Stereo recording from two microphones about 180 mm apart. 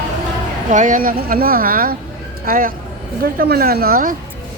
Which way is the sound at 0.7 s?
45° right (ahead or behind).